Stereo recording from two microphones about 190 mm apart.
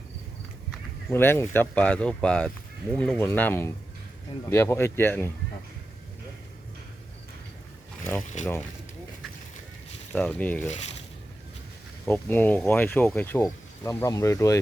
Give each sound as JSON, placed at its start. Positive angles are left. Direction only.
{"t": 1.1, "sound": "speech", "side_deg": 10}
{"t": 8.2, "sound": "speech", "side_deg": 40}
{"t": 10.2, "sound": "speech", "side_deg": 10}
{"t": 12.0, "sound": "speech", "side_deg": 10}